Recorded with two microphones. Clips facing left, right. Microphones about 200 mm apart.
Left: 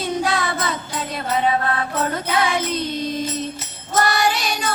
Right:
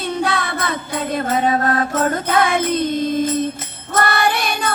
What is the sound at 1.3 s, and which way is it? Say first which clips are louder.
Music: right 1 dB; 45° right (ahead or behind).